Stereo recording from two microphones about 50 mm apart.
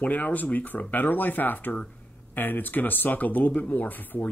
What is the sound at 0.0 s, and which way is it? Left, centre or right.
Speech, left.